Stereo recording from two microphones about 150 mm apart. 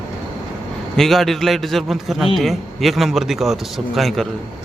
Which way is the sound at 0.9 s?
Centre (ahead or behind).